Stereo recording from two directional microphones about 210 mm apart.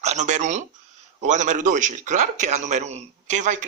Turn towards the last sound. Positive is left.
turn(degrees=-35)  # may be behind; listen again after turning